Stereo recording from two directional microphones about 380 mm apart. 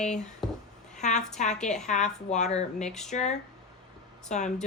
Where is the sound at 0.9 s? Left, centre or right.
Centre.